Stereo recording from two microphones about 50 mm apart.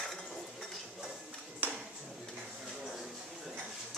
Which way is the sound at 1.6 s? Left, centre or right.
Right.